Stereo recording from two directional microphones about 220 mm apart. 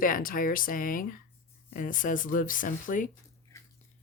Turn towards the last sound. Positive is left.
turn(degrees=35)  # may be behind; listen again after turning